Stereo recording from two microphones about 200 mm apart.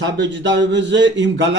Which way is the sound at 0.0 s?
65° right (ahead or behind).